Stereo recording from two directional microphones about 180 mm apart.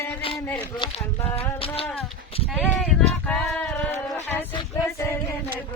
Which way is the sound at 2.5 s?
5° left (ahead or behind).